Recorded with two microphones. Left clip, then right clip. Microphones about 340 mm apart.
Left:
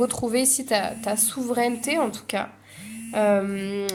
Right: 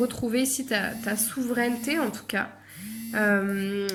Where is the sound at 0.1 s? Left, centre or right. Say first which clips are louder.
Left 3 dB; centre.